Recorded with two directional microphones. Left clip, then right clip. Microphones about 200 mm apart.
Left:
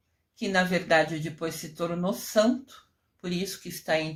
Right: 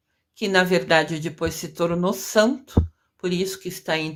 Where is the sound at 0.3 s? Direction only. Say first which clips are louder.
Right 7 dB; 35° right (ahead or behind).